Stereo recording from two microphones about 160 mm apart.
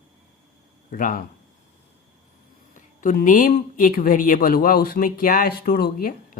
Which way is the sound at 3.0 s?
55° left (ahead or behind).